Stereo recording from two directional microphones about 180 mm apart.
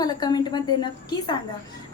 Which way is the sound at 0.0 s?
20° left (ahead or behind).